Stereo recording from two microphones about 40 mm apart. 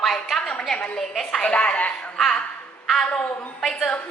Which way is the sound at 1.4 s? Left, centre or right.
Left.